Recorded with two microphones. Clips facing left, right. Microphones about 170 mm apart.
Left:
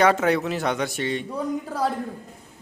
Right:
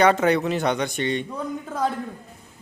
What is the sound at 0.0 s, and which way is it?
A man's voice, centre (ahead or behind).